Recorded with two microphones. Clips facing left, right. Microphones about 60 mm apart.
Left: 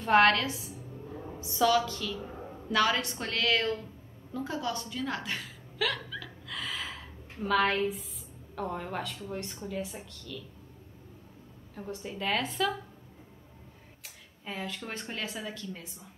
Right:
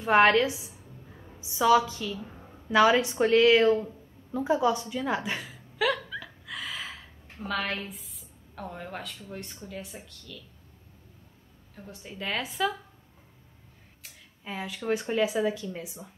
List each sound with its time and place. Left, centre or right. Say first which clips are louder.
0.0 s a woman's voice: right 2 dB; centre
4.3 s a sound: right 9 dB; centre
7.4 s speech: left 5 dB; centre
11.7 s speech: left 5 dB; centre
14.0 s speech: right 1 dB; centre